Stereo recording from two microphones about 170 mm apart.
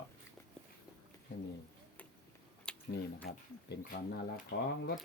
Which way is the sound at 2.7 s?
5° left (ahead or behind).